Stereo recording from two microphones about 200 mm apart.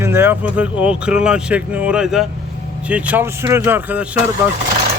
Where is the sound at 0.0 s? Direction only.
10° right (ahead or behind).